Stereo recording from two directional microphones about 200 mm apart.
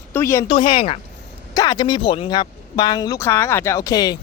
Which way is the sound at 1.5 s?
15° left (ahead or behind).